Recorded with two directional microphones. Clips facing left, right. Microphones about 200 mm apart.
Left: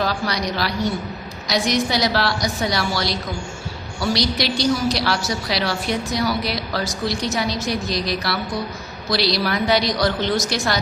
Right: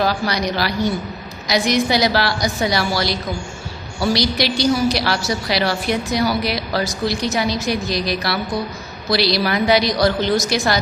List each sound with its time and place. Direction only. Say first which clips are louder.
0.0 s a woman's voice: right 3 dB; 5° right (ahead or behind)